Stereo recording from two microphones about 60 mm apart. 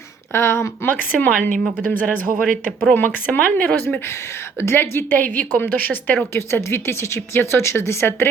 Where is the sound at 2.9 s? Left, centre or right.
Left.